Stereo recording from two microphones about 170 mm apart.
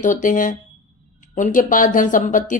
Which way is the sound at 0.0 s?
50° left (ahead or behind).